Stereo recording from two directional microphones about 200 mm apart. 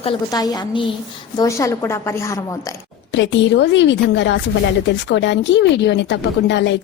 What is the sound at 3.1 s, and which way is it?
Speech, 65° left (ahead or behind).